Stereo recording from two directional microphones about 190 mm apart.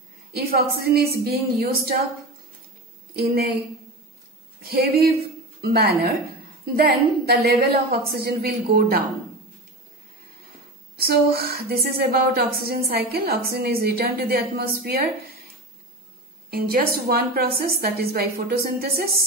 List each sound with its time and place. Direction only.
0.3 s speech: 55° right (ahead or behind)
3.2 s a woman's voice: 55° right (ahead or behind)
11.0 s speech: 55° right (ahead or behind)
16.4 s speech: 50° right (ahead or behind)